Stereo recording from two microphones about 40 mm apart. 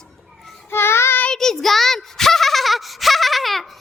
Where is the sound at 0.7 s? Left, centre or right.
Left.